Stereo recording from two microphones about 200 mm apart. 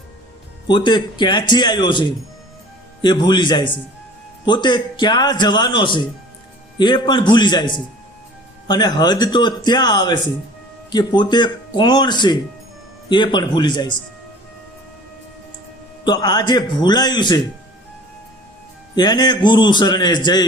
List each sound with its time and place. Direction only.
0.7 s a man's voice: 20° left (ahead or behind)
16.0 s a man's voice: 20° left (ahead or behind)
18.9 s a man's voice: 20° left (ahead or behind)